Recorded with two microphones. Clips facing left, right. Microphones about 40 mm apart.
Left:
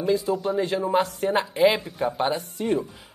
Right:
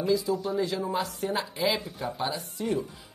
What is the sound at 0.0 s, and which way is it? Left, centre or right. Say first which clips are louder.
A man's voice: left 3 dB; left.